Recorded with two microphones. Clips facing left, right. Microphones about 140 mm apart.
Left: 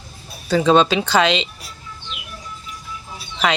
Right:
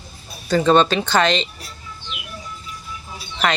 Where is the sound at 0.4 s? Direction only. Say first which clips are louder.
Even; centre (ahead or behind).